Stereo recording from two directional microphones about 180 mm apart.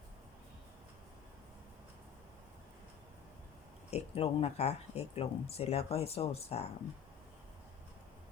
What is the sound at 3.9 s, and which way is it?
Speech, 35° left (ahead or behind).